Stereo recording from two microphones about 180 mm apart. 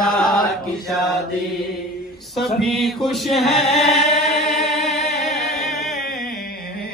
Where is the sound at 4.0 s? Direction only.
Centre (ahead or behind).